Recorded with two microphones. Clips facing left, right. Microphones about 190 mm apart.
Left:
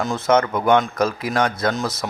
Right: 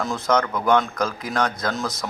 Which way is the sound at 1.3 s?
5° left (ahead or behind).